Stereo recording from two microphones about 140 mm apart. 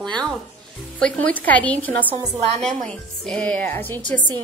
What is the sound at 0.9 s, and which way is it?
A woman's voice, 5° left (ahead or behind).